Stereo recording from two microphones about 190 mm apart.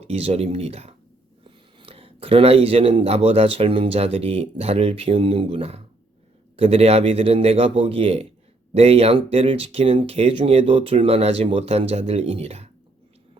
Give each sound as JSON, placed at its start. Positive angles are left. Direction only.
{"t": 0.0, "sound": "speech", "side_deg": -35}